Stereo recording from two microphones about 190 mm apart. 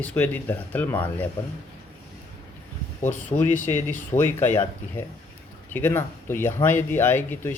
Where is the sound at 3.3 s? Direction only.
40° left (ahead or behind).